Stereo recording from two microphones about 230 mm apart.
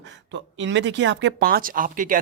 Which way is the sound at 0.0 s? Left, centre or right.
Right.